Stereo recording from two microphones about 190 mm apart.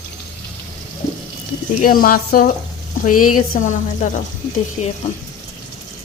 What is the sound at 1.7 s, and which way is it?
Speech, 50° left (ahead or behind).